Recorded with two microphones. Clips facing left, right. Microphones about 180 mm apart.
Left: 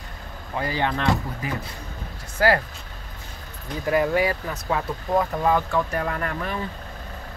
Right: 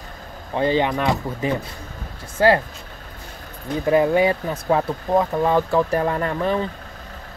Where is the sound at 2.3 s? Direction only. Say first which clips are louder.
Right 4 dB; 25° right (ahead or behind).